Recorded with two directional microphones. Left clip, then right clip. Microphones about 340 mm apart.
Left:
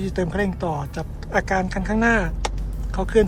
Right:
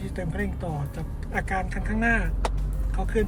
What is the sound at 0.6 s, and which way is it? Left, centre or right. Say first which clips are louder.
Speech: left 8 dB; left.